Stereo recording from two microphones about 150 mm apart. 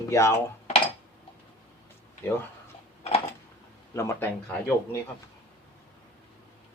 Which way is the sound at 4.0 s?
15° left (ahead or behind).